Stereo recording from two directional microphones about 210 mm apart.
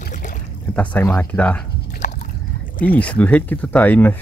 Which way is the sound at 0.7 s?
10° left (ahead or behind).